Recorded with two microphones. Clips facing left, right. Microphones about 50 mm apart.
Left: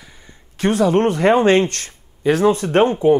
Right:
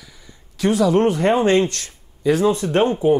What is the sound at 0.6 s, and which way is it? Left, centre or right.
Speech, left.